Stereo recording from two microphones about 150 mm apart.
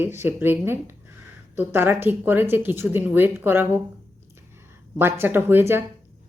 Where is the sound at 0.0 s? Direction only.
15° right (ahead or behind).